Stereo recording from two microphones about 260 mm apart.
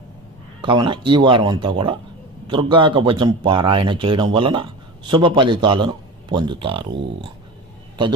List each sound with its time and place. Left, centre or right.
0.6 s a man's voice: centre